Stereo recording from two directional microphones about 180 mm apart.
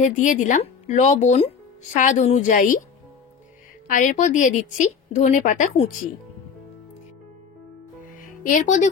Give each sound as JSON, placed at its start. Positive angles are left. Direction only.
{"t": 0.0, "sound": "a woman's voice", "side_deg": 45}
{"t": 3.8, "sound": "a woman's voice", "side_deg": 50}
{"t": 8.2, "sound": "music", "side_deg": 45}